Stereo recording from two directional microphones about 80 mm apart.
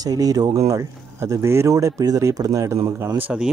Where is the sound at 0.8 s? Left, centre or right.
Right.